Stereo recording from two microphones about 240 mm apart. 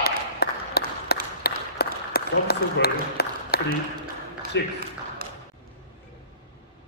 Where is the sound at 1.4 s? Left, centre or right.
Left.